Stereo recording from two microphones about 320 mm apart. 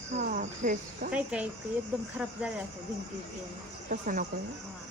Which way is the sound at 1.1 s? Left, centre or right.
Centre.